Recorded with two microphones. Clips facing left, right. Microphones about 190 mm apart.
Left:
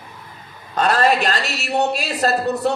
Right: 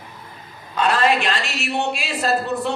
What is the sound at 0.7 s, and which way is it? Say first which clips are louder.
A man's voice: left 2 dB; 40° left (ahead or behind).